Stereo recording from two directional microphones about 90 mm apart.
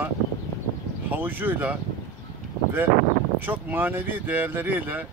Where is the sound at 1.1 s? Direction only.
20° right (ahead or behind).